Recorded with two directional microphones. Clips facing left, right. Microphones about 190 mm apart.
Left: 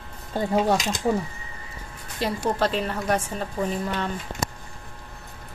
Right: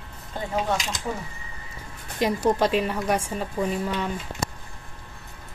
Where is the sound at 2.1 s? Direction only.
15° right (ahead or behind).